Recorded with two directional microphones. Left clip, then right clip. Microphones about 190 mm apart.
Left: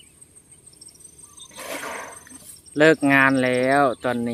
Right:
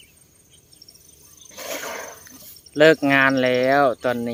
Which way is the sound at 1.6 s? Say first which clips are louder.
Right 1 dB; centre (ahead or behind).